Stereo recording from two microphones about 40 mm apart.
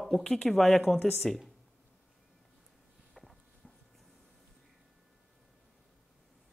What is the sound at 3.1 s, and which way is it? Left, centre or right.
Walk, centre.